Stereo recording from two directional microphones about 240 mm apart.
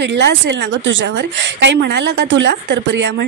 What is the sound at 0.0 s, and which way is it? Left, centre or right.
Speech, right.